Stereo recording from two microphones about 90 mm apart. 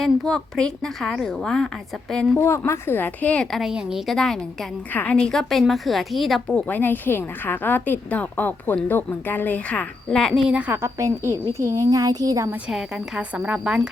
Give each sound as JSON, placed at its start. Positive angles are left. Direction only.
{"t": 0.0, "sound": "a woman's voice", "side_deg": 5}
{"t": 2.4, "sound": "a woman's voice", "side_deg": 30}
{"t": 3.5, "sound": "a woman's voice", "side_deg": -5}
{"t": 6.6, "sound": "a woman's voice", "side_deg": 20}
{"t": 10.8, "sound": "a child's voice", "side_deg": -35}
{"t": 12.7, "sound": "a woman's voice", "side_deg": -15}